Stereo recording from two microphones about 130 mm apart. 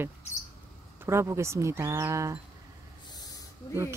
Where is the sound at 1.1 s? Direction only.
20° right (ahead or behind).